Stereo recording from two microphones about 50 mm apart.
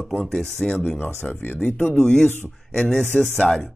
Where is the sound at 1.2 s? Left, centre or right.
Left.